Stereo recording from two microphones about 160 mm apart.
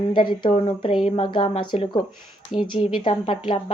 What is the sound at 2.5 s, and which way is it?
Speech, 40° left (ahead or behind).